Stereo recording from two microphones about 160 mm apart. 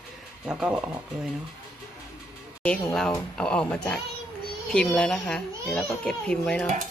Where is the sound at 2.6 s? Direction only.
5° left (ahead or behind).